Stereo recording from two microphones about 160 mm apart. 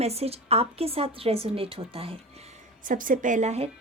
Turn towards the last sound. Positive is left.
turn(degrees=-45)  # may be behind; listen again after turning